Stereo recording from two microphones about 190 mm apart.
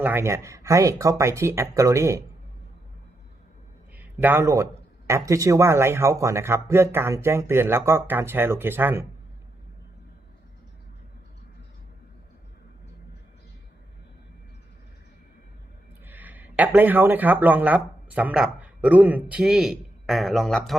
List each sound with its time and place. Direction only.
0.0 s speech: 10° right (ahead or behind)
3.9 s speech: 10° right (ahead or behind)
16.0 s speech: 10° right (ahead or behind)